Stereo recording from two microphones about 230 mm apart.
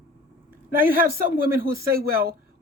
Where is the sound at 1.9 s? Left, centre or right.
Right.